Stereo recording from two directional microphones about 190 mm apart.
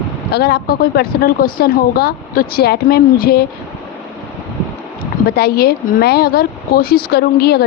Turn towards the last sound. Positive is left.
turn(degrees=55)  # may be behind; listen again after turning